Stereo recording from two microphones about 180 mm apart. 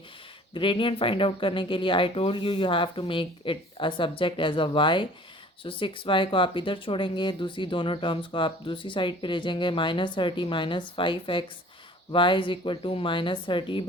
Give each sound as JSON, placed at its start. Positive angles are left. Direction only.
{"t": 0.5, "sound": "speech", "side_deg": 30}